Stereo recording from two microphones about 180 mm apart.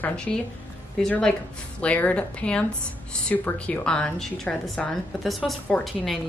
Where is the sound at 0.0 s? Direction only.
5° left (ahead or behind).